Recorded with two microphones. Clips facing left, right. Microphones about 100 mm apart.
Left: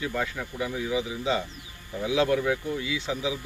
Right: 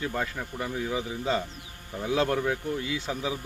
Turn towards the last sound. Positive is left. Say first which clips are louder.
# left 1 dB
turn(degrees=-50)  # may be behind; listen again after turning